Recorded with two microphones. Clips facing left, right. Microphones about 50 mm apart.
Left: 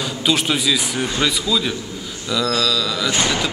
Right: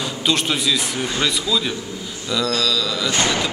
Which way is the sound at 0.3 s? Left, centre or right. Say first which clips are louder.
Left 2 dB; centre.